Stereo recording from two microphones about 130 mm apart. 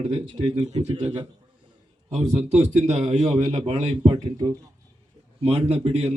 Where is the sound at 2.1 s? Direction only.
60° right (ahead or behind).